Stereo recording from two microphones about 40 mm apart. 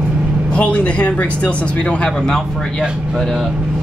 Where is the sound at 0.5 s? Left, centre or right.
Left.